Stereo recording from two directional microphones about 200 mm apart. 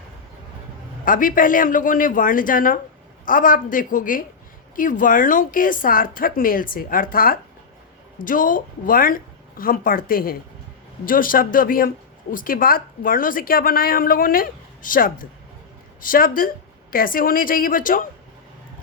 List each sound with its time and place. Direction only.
1.0 s a woman's voice: 45° left (ahead or behind)